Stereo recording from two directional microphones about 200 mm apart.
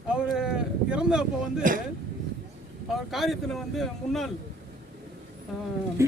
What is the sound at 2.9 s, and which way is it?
Speech, centre (ahead or behind).